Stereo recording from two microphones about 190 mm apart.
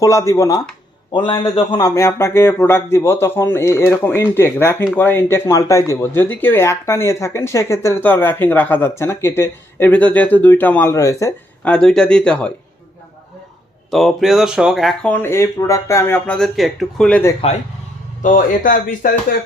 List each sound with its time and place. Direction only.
0.0 s speech: 15° left (ahead or behind)
13.9 s speech: centre (ahead or behind)
18.2 s speech: 45° left (ahead or behind)